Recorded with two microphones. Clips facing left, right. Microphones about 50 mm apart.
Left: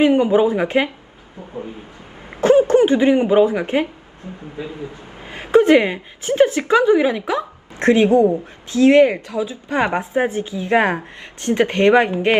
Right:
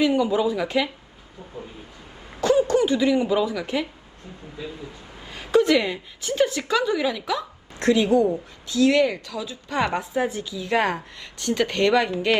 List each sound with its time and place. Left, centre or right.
0.0 s a woman's voice: left
2.4 s a woman's voice: left